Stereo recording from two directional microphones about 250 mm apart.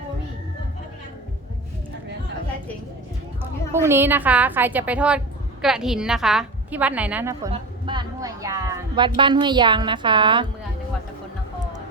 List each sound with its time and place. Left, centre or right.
3.8 s a woman's voice: centre